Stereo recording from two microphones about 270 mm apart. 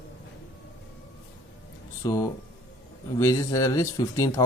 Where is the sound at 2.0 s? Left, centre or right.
Centre.